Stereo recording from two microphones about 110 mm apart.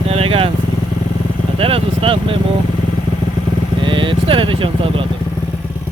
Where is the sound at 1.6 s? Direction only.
55° right (ahead or behind).